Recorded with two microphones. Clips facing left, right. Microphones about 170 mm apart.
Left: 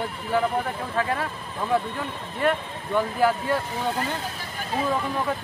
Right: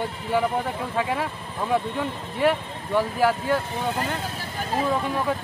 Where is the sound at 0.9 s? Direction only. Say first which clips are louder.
Even; 10° right (ahead or behind).